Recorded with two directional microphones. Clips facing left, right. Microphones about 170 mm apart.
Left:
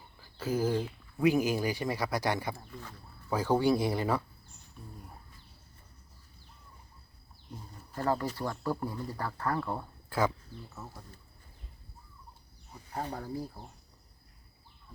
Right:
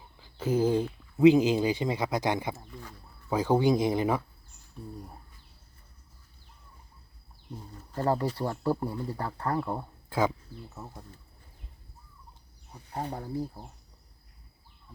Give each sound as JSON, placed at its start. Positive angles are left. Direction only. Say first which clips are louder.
{"t": 0.2, "sound": "speech", "louder": "right 4 dB", "side_deg": -20}
{"t": 4.8, "sound": "speech", "louder": "right 8 dB", "side_deg": -35}
{"t": 7.9, "sound": "speech", "louder": "right 3 dB", "side_deg": -30}
{"t": 13.1, "sound": "speech", "louder": "right 2 dB", "side_deg": -15}